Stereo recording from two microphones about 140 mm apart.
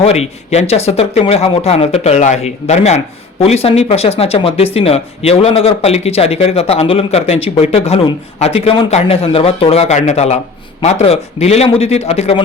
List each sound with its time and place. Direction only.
0.0 s speech: 50° left (ahead or behind)